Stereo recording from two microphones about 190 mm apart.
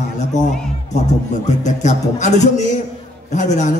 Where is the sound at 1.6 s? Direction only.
40° left (ahead or behind).